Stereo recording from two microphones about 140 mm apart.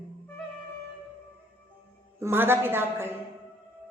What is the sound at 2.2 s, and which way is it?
Speech, 15° right (ahead or behind).